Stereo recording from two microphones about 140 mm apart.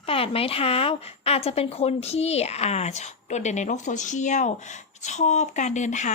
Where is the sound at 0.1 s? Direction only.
40° left (ahead or behind).